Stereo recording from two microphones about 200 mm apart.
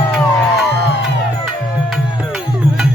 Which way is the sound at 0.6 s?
60° left (ahead or behind).